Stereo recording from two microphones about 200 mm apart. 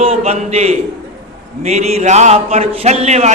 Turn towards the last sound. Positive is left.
turn(degrees=-35)  # may be behind; listen again after turning